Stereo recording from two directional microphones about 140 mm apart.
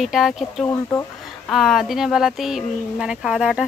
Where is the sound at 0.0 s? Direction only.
Centre (ahead or behind).